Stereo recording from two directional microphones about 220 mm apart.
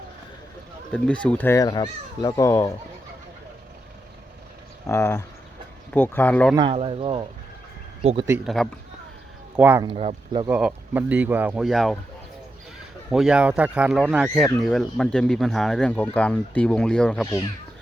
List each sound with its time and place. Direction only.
0.9 s speech: 5° left (ahead or behind)
4.9 s speech: 10° left (ahead or behind)
6.6 s speech: 25° right (ahead or behind)
8.4 s speech: centre (ahead or behind)
9.6 s speech: 10° right (ahead or behind)
9.8 s speech: 25° right (ahead or behind)
10.5 s speech: 5° right (ahead or behind)
13.1 s speech: centre (ahead or behind)